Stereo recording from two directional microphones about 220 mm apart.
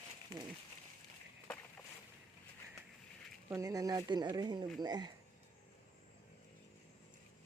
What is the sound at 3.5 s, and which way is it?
Speech, 15° right (ahead or behind).